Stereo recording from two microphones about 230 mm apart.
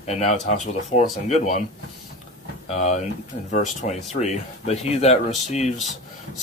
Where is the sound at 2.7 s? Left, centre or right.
Left.